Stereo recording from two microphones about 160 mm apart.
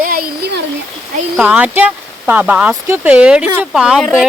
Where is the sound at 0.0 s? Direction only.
65° right (ahead or behind).